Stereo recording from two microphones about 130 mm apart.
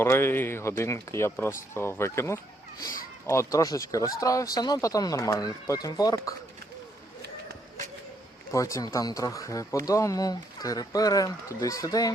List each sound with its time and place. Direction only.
0.0 s speech: 20° left (ahead or behind)
8.5 s speech: 25° left (ahead or behind)